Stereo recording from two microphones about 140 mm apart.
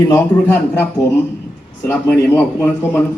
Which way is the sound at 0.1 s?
15° left (ahead or behind).